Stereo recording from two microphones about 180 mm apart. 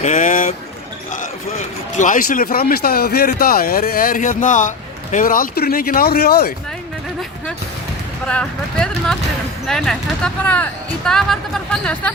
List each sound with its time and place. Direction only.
0.0 s speech: 45° left (ahead or behind)
2.0 s speech: 45° left (ahead or behind)
8.3 s speech: 5° left (ahead or behind)